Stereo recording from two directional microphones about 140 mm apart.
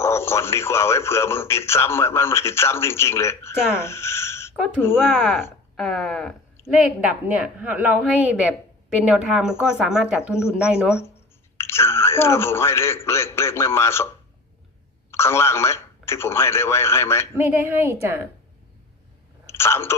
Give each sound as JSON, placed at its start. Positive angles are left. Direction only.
{"t": 0.0, "sound": "speech", "side_deg": 20}
{"t": 5.0, "sound": "a woman's voice", "side_deg": -5}
{"t": 7.3, "sound": "a woman's voice", "side_deg": -10}
{"t": 11.5, "sound": "speech", "side_deg": 20}
{"t": 15.1, "sound": "speech", "side_deg": 20}
{"t": 17.3, "sound": "a woman's voice", "side_deg": -15}
{"t": 19.5, "sound": "speech", "side_deg": 20}